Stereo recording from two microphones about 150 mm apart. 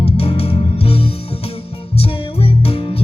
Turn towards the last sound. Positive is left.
turn(degrees=40)  # may be behind; listen again after turning